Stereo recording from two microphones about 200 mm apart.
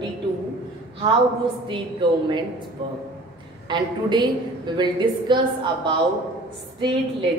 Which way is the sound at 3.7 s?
20° right (ahead or behind).